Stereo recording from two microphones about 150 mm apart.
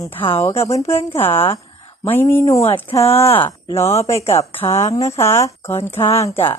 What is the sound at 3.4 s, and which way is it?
A woman's voice, 15° left (ahead or behind).